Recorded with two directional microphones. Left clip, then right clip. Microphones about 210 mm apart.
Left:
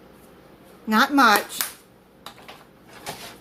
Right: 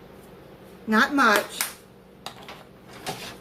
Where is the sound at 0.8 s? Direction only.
45° left (ahead or behind).